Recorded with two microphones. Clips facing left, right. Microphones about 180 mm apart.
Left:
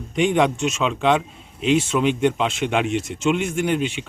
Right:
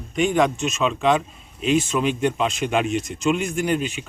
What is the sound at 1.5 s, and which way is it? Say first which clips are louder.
Speech: left 1 dB; 85° left.